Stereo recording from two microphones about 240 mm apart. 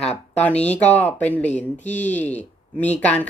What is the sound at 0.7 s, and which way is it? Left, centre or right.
Speech, centre.